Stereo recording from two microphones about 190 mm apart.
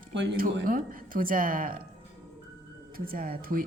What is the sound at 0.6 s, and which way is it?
A woman's voice, 45° right (ahead or behind).